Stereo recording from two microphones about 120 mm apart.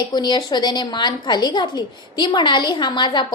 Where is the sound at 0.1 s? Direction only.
35° left (ahead or behind).